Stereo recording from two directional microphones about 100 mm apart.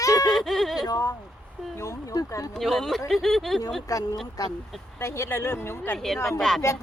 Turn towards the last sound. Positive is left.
turn(degrees=5)  # may be behind; listen again after turning